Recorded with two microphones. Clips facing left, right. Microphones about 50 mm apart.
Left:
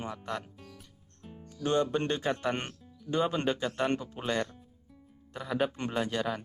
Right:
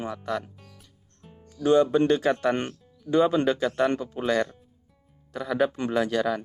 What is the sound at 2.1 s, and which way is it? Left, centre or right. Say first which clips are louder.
Speech: right 8 dB; right.